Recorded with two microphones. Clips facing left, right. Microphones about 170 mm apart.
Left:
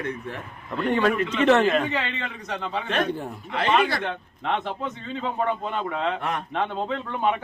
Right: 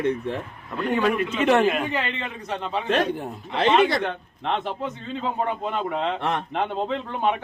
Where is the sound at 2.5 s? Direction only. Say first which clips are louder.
Right 3 dB; 30° right (ahead or behind).